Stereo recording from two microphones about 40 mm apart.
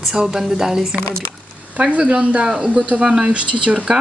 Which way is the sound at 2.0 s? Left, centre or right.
Right.